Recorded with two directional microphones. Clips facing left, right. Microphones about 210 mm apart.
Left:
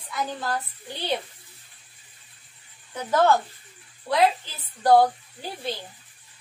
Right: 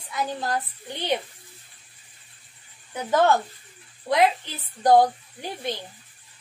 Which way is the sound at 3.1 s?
15° right (ahead or behind).